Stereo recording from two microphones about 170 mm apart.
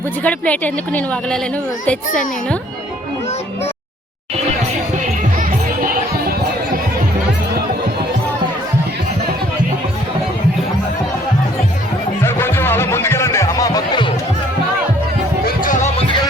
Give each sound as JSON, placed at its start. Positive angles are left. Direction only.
{"t": 0.3, "sound": "a woman's voice", "side_deg": 10}
{"t": 12.2, "sound": "music", "side_deg": 15}
{"t": 15.4, "sound": "music", "side_deg": 50}